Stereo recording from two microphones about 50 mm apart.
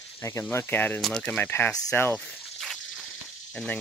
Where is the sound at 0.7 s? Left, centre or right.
Left.